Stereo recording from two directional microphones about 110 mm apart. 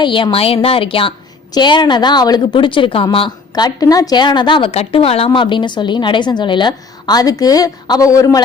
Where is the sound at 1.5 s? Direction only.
40° left (ahead or behind).